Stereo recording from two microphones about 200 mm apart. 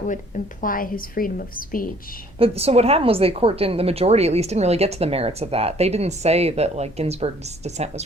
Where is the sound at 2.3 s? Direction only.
30° right (ahead or behind).